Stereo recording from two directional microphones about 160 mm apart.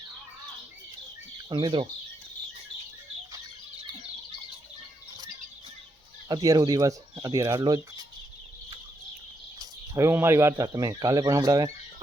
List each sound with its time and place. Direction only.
1.5 s speech: 30° right (ahead or behind)
6.2 s speech: 25° right (ahead or behind)
9.6 s speech: 20° right (ahead or behind)